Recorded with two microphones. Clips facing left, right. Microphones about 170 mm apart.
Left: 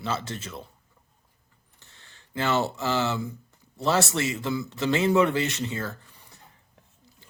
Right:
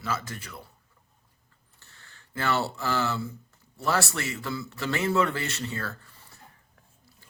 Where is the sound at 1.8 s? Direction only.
20° left (ahead or behind).